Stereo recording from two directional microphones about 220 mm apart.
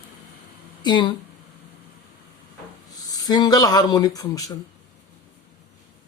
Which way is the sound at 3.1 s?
15° left (ahead or behind).